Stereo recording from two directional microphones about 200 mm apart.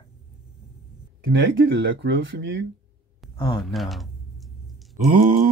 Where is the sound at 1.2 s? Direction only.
60° right (ahead or behind).